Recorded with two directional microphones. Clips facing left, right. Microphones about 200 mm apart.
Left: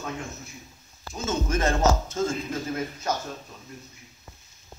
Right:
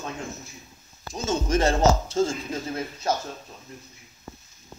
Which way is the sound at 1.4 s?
35° right (ahead or behind).